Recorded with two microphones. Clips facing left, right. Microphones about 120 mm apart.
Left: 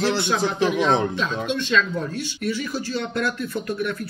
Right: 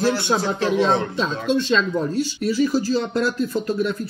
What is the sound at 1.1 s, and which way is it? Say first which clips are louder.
Speech: right 4 dB; 30° right (ahead or behind).